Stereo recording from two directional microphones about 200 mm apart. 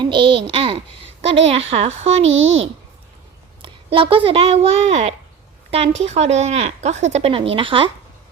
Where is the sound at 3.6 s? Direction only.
25° right (ahead or behind).